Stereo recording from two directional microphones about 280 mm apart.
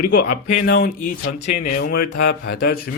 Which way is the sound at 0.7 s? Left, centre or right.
Left.